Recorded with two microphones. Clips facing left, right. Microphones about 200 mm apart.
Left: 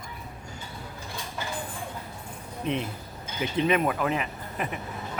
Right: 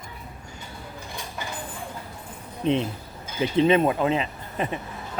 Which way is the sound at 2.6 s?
30° right (ahead or behind).